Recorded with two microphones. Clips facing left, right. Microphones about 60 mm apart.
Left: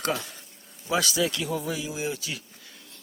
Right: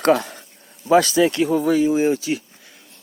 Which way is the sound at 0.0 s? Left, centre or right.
Right.